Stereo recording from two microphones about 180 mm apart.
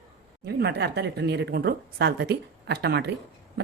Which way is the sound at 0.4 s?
65° right (ahead or behind).